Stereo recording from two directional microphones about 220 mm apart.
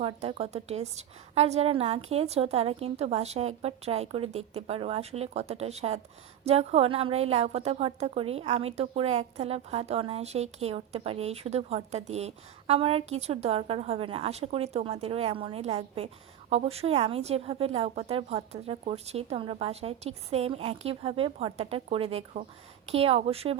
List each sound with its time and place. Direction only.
0.0 s a woman's voice: 25° right (ahead or behind)